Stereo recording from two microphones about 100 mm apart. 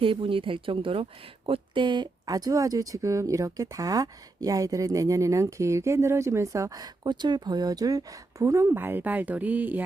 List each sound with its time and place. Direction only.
0.0 s speech: 60° right (ahead or behind); by 8.7 s 35° right (ahead or behind)
8.7 s speech: 20° right (ahead or behind)